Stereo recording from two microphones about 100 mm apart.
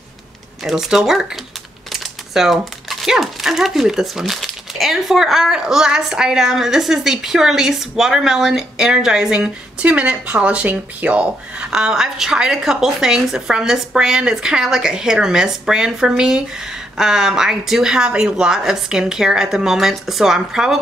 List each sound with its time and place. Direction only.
0.7 s speech: 5° right (ahead or behind)